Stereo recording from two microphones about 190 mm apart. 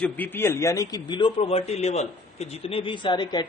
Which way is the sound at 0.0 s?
10° left (ahead or behind).